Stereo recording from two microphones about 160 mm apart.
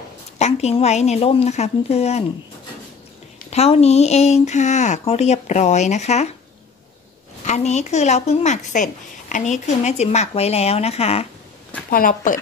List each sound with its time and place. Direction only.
0.4 s a woman's voice: 45° left (ahead or behind)
3.4 s a woman's voice: 40° left (ahead or behind)
7.4 s a woman's voice: 45° left (ahead or behind)
11.9 s speech: 60° left (ahead or behind)